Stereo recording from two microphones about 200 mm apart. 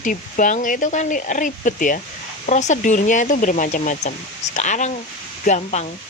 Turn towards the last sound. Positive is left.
turn(degrees=35)  # may be behind; listen again after turning